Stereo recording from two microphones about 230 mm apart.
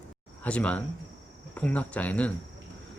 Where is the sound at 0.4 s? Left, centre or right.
Centre.